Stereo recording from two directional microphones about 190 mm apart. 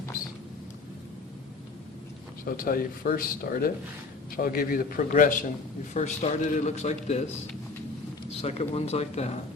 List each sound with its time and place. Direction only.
2.4 s a man's voice: 50° left (ahead or behind)
8.4 s a man's voice: 35° left (ahead or behind)